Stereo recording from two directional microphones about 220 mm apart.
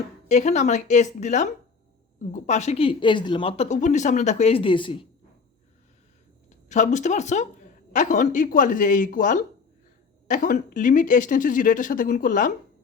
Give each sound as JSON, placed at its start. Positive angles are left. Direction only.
{"t": 0.3, "sound": "a woman's voice", "side_deg": 30}
{"t": 6.5, "sound": "speech", "side_deg": 35}